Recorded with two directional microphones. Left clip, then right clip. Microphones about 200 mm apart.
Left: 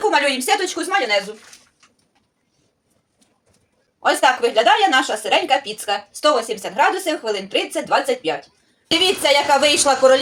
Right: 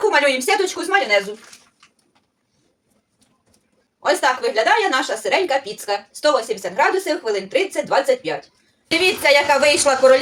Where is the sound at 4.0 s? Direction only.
15° left (ahead or behind).